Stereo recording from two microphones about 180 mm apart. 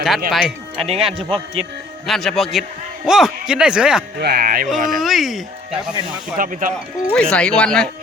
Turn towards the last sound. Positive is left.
turn(degrees=5)  # may be behind; listen again after turning